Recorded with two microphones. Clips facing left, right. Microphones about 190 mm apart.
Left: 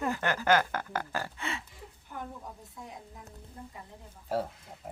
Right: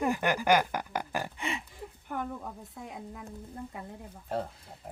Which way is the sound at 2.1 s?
60° right (ahead or behind).